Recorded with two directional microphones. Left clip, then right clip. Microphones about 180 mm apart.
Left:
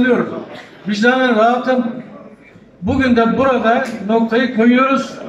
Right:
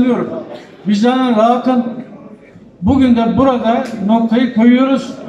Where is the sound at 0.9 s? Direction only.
25° right (ahead or behind).